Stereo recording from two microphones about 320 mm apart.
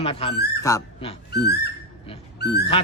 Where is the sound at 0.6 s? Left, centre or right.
Centre.